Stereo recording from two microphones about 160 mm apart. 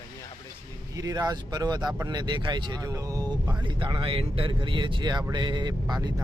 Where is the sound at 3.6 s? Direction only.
30° right (ahead or behind).